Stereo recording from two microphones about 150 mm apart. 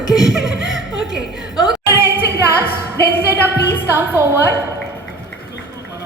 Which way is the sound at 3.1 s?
15° right (ahead or behind).